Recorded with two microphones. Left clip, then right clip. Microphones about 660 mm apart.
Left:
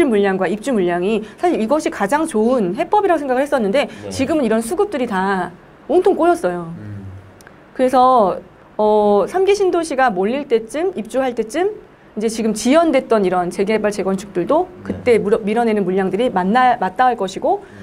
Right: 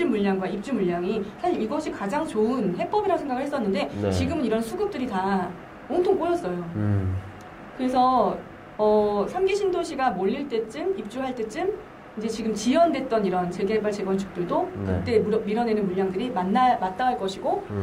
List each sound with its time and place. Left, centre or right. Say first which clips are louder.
0.0 s a woman's voice: left 10 dB; left
7.8 s a woman's voice: left 9 dB; left